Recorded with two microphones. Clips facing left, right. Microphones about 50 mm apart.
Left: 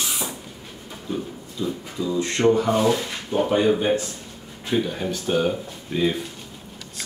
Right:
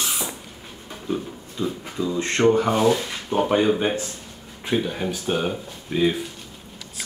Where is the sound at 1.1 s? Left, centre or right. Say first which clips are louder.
Right 2 dB; right.